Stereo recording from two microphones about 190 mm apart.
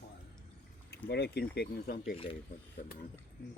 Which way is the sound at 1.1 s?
60° left (ahead or behind).